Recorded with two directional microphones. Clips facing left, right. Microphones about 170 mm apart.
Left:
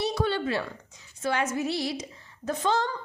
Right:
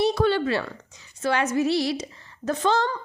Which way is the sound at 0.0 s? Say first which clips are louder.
Right 6 dB; 60° right (ahead or behind).